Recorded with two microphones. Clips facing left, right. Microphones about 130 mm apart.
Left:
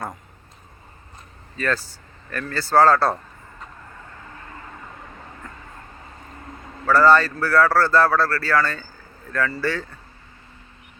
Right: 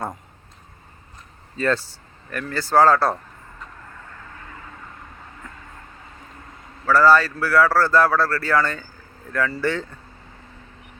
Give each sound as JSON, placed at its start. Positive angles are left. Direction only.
{"t": 1.5, "sound": "speech", "side_deg": -25}
{"t": 2.3, "sound": "a man's voice", "side_deg": -15}
{"t": 6.8, "sound": "a man's voice", "side_deg": -5}